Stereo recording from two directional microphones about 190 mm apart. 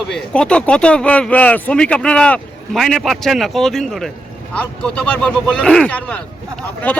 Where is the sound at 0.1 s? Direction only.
5° left (ahead or behind).